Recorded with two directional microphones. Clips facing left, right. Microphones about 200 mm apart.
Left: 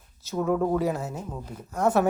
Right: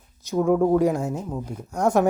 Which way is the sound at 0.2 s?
15° right (ahead or behind).